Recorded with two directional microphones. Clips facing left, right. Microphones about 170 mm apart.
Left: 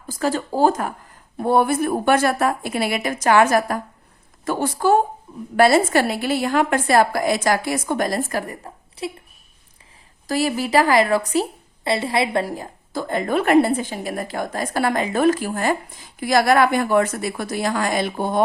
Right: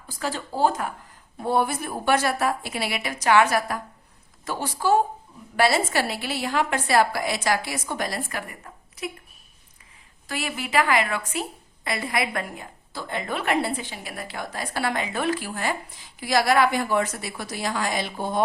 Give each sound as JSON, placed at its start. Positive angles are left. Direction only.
{"t": 0.2, "sound": "a woman's voice", "side_deg": 45}
{"t": 1.4, "sound": "a woman's voice", "side_deg": 55}
{"t": 10.2, "sound": "a woman's voice", "side_deg": 35}